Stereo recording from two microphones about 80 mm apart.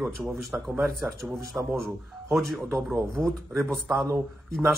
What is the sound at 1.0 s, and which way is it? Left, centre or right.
Speech, right.